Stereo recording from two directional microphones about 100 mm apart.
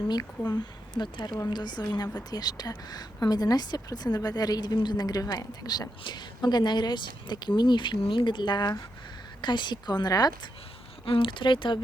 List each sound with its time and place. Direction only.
0.1 s a woman's voice: 45° left (ahead or behind)
11.0 s speech: 60° left (ahead or behind)